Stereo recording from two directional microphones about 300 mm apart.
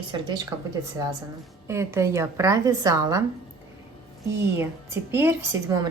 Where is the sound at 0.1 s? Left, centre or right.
Centre.